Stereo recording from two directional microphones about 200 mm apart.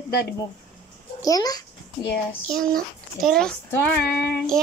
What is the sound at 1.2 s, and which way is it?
Speech, 20° left (ahead or behind).